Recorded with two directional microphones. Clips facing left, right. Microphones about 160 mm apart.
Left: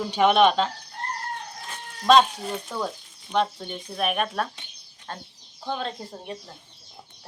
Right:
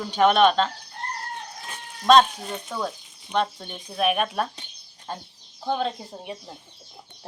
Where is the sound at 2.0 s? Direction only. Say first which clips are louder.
Right 1 dB; centre (ahead or behind).